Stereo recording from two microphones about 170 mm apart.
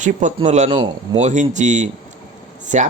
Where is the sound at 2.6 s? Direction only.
45° right (ahead or behind).